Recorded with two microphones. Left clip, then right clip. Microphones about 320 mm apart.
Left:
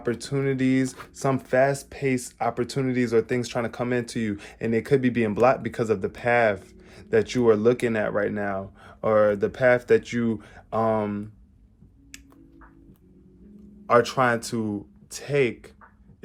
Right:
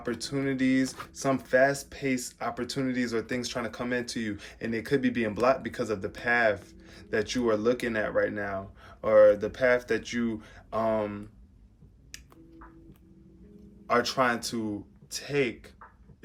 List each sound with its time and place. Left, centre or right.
0.0 s speech: centre
13.8 s speech: centre